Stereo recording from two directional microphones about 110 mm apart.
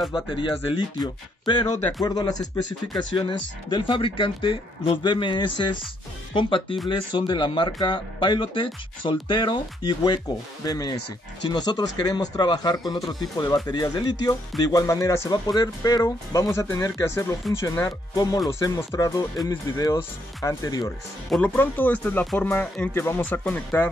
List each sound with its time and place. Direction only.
0.3 s speech: 45° left (ahead or behind)
3.2 s speech: 50° left (ahead or behind); by 17.8 s 25° left (ahead or behind)
17.8 s speech: 35° left (ahead or behind)
21.4 s speech: 15° left (ahead or behind)